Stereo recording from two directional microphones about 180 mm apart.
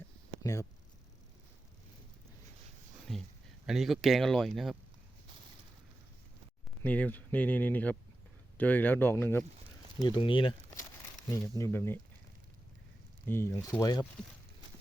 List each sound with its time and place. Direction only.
0.4 s speech: 15° left (ahead or behind)
3.1 s a sound: centre (ahead or behind)
3.7 s speech: centre (ahead or behind)
6.8 s speech: 5° left (ahead or behind)
10.0 s speech: 30° left (ahead or behind)
11.3 s speech: 15° left (ahead or behind)
13.2 s speech: 15° left (ahead or behind)